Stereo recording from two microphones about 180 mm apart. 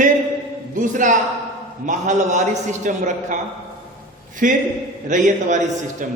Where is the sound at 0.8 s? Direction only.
45° right (ahead or behind).